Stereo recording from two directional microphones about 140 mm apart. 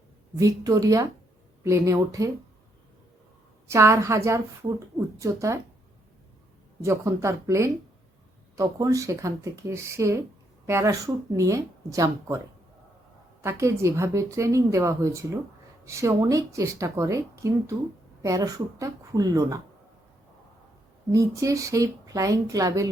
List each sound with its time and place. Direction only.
0.3 s a woman's voice: 25° right (ahead or behind)
3.7 s a woman's voice: 20° right (ahead or behind)
6.8 s a woman's voice: 20° right (ahead or behind)
13.4 s a woman's voice: 20° right (ahead or behind)
21.1 s a woman's voice: 25° right (ahead or behind)